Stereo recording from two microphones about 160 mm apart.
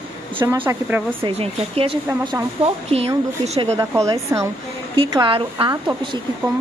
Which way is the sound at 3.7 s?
20° right (ahead or behind).